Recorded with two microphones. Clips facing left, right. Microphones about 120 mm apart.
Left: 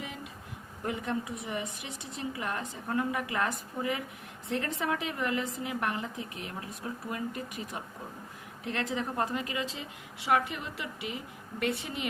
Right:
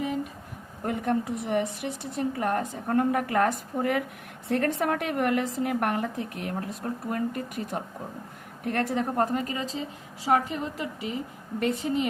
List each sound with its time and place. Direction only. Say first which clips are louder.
0.9 s a woman's voice: right 6 dB; 55° right (ahead or behind)